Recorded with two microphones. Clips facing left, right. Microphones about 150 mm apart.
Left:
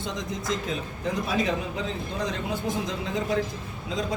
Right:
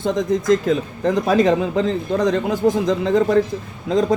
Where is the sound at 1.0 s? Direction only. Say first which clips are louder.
Right 11 dB; 90° right.